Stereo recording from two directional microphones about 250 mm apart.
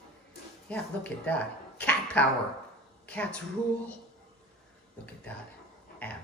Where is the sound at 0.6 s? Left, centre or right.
Centre.